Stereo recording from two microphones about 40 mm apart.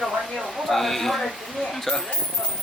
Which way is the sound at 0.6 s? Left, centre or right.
Centre.